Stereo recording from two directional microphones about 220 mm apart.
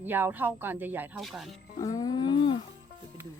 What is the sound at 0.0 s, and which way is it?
Speech, 10° right (ahead or behind).